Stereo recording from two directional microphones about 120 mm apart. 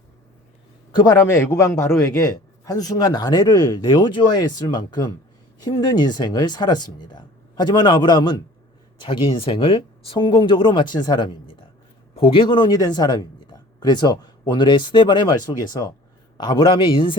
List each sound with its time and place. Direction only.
0.9 s a man's voice: 30° left (ahead or behind); by 17.2 s 45° left (ahead or behind)